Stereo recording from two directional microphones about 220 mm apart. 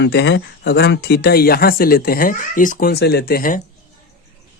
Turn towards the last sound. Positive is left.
turn(degrees=40)  # may be behind; listen again after turning